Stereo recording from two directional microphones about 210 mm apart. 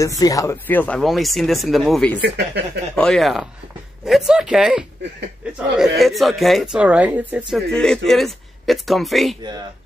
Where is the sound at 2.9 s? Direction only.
5° left (ahead or behind).